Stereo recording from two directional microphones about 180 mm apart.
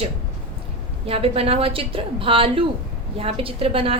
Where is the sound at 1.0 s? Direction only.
30° right (ahead or behind).